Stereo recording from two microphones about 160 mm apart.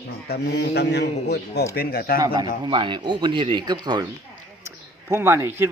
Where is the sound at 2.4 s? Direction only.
30° right (ahead or behind).